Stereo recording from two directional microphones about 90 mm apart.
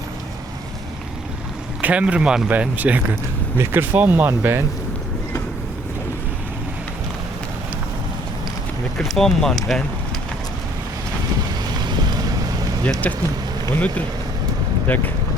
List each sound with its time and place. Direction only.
1.8 s speech: 15° right (ahead or behind)
9.0 s speech: 5° left (ahead or behind)
11.8 s vehicle: 55° right (ahead or behind)
12.8 s speech: 15° left (ahead or behind)
14.8 s speech: 20° left (ahead or behind)